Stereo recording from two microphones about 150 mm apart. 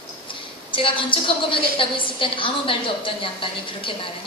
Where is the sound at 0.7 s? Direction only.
35° left (ahead or behind).